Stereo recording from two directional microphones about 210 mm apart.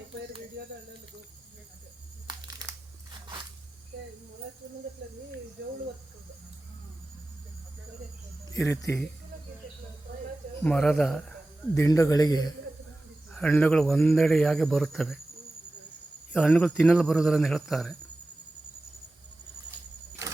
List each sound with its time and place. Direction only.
2.2 s crushing: 15° right (ahead or behind)
8.5 s speech: 15° left (ahead or behind)
10.6 s a man's voice: 5° left (ahead or behind)
11.7 s speech: 15° left (ahead or behind)
13.3 s a man's voice: 5° left (ahead or behind)
16.3 s a man's voice: 5° left (ahead or behind)